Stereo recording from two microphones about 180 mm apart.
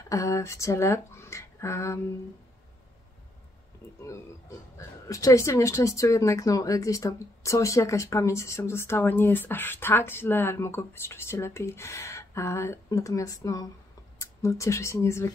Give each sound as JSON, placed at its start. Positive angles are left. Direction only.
{"t": 0.1, "sound": "speech", "side_deg": 15}
{"t": 4.0, "sound": "speech", "side_deg": 15}